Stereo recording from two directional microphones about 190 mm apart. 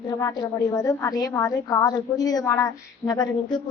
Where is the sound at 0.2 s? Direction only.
15° left (ahead or behind).